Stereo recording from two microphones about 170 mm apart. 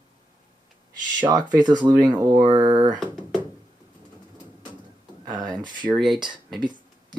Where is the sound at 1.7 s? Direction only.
20° right (ahead or behind).